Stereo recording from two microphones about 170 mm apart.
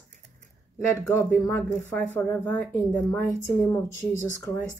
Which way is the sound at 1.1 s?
15° left (ahead or behind).